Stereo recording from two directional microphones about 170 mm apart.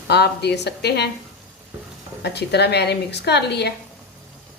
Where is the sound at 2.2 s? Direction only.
75° left (ahead or behind).